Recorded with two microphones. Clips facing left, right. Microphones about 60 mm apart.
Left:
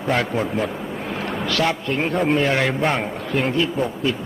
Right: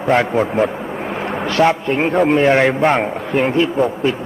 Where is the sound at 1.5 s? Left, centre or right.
Right.